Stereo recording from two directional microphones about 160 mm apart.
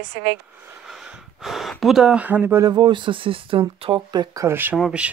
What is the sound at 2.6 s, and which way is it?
Speech, 30° right (ahead or behind).